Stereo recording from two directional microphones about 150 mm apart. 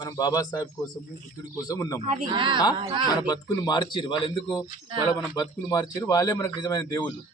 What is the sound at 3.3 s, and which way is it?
Speech, 30° left (ahead or behind).